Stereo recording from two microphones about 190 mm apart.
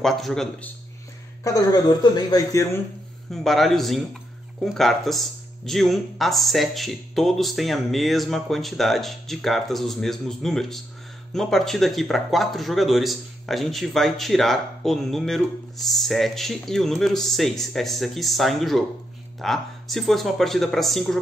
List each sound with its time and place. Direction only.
0.0 s a man's voice: centre (ahead or behind)
1.4 s speech: 20° left (ahead or behind)
3.3 s a man's voice: centre (ahead or behind)